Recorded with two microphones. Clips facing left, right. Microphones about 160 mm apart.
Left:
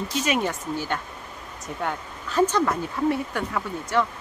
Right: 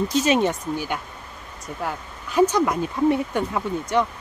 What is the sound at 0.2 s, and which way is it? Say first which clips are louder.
Speech: right 4 dB; 25° right (ahead or behind).